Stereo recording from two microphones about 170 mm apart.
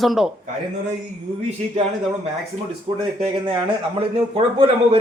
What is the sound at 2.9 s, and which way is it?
A man's voice, 35° right (ahead or behind).